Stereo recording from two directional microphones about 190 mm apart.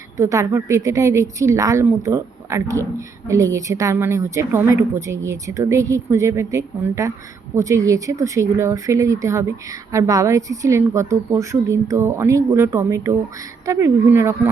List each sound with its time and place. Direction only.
0.2 s speech: 15° right (ahead or behind)